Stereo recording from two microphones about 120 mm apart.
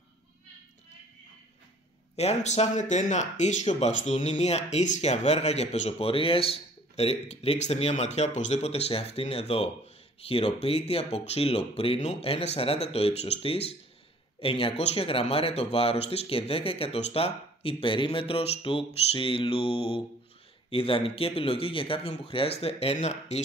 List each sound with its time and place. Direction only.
2.1 s a man's voice: 65° left (ahead or behind)